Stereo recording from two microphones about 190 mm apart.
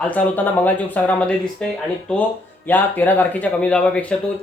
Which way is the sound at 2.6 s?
10° left (ahead or behind).